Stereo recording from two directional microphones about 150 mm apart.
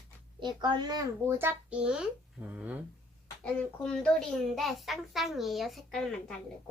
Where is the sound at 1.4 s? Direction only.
10° right (ahead or behind).